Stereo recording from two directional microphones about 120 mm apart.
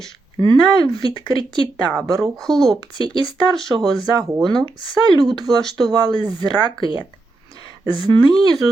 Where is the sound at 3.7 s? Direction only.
30° right (ahead or behind).